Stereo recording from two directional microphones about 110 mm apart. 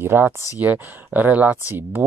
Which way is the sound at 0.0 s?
20° right (ahead or behind).